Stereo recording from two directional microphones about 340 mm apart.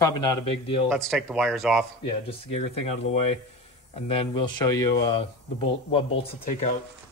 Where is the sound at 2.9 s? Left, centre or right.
Centre.